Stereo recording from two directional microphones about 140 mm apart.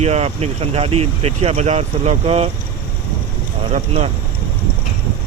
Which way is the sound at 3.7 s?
55° right (ahead or behind).